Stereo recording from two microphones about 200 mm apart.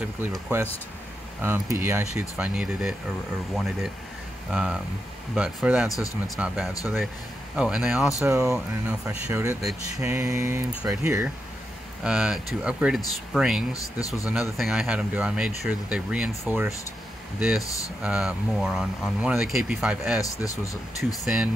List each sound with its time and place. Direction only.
0.0 s speech: 5° right (ahead or behind)
9.6 s speech: centre (ahead or behind)
10.0 s speech: 15° right (ahead or behind)
13.7 s speech: 15° left (ahead or behind)
14.6 s speech: centre (ahead or behind)
20.2 s speech: 15° left (ahead or behind)